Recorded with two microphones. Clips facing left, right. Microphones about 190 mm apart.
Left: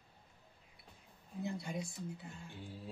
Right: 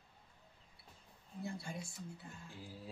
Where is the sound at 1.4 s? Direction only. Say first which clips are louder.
Left 4 dB; 20° left (ahead or behind).